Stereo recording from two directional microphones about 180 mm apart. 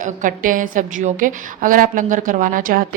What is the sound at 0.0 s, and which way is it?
A woman's voice, 45° right (ahead or behind).